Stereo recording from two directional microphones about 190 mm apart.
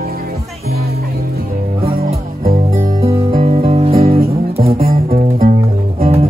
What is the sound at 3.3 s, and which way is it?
Music, 35° right (ahead or behind).